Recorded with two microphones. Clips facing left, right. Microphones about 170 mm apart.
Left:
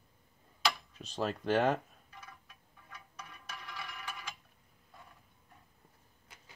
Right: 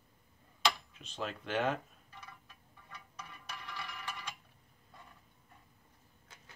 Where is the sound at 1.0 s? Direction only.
40° left (ahead or behind).